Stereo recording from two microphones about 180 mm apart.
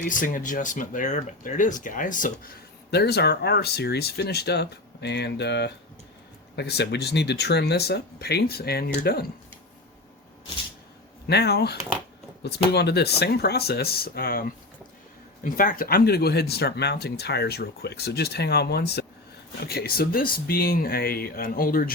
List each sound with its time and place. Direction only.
0.0 s speech: 50° left (ahead or behind)
11.3 s speech: 65° left (ahead or behind)